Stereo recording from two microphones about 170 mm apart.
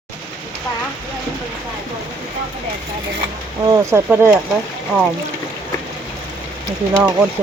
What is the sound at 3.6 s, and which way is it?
Speech, 20° right (ahead or behind).